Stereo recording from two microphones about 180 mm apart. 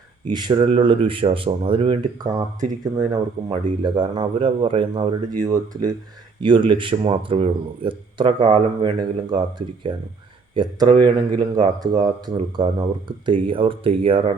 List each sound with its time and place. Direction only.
0.3 s speech: 25° right (ahead or behind)
8.4 s speech: 40° right (ahead or behind)
9.0 s speech: 25° right (ahead or behind)